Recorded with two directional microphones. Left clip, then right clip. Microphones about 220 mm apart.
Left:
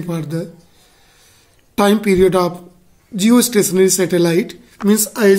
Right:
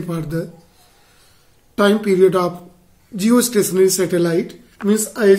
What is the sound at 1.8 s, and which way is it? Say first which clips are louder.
Speech: left 1 dB; 25° left (ahead or behind).